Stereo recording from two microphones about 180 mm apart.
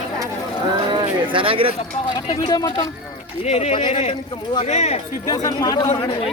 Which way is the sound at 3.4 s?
35° left (ahead or behind).